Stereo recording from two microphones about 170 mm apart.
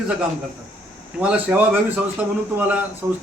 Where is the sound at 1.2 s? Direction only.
10° right (ahead or behind).